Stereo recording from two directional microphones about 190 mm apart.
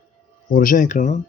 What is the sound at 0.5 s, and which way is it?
Speech, 45° left (ahead or behind).